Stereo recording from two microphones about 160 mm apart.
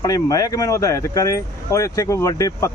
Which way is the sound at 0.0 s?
25° left (ahead or behind).